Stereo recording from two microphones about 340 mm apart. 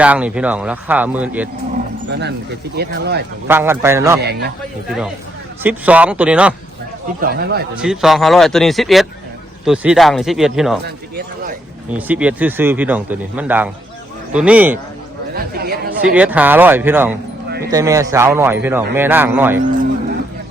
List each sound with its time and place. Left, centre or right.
0.0 s speech: centre
2.0 s speech: right
3.4 s speech: centre
4.2 s speech: right
5.6 s speech: centre
7.2 s speech: right
7.8 s speech: centre
11.9 s speech: centre
15.3 s speech: right
16.1 s speech: centre